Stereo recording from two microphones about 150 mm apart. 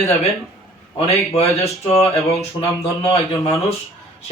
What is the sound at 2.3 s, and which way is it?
Speech, 45° left (ahead or behind).